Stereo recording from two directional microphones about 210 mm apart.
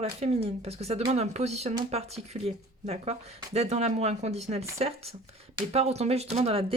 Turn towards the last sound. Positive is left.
turn(degrees=-30)  # may be behind; listen again after turning